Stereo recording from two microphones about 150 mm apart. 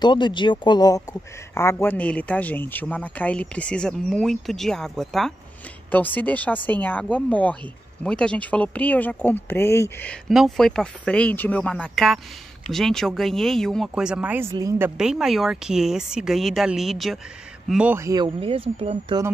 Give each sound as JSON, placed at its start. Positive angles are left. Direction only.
{"t": 0.0, "sound": "speech", "side_deg": 30}
{"t": 10.2, "sound": "speech", "side_deg": 0}
{"t": 15.0, "sound": "a man's voice", "side_deg": -5}
{"t": 17.9, "sound": "speech", "side_deg": -25}